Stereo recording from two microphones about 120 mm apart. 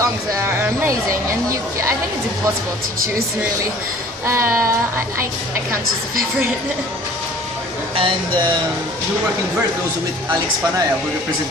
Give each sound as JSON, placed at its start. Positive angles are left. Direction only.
{"t": 0.0, "sound": "speech", "side_deg": -25}
{"t": 4.3, "sound": "speech", "side_deg": -20}
{"t": 7.9, "sound": "speech", "side_deg": -45}